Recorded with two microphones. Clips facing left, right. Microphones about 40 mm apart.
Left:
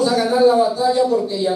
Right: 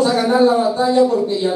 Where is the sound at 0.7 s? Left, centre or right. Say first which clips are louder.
Right 2 dB; right.